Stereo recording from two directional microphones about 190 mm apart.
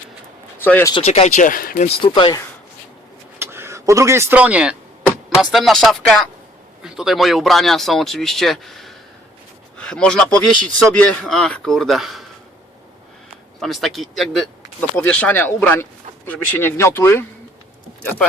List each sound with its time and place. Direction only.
0.6 s speech: 10° left (ahead or behind)
0.9 s speech: 35° left (ahead or behind)
2.0 s speech: 25° left (ahead or behind)
3.3 s speech: 10° right (ahead or behind)
13.6 s speech: centre (ahead or behind)